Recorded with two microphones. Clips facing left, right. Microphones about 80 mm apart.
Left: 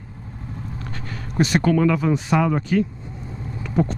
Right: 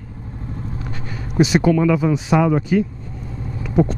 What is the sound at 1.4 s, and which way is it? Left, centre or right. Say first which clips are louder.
Speech: right 3 dB; centre.